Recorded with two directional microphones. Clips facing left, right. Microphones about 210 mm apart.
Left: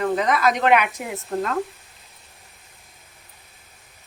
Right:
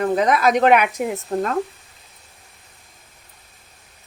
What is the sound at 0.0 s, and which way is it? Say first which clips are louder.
Speech: right 3 dB; 40° right (ahead or behind).